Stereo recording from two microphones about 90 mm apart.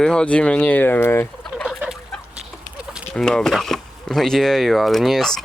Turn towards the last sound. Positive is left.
turn(degrees=5)  # may be behind; listen again after turning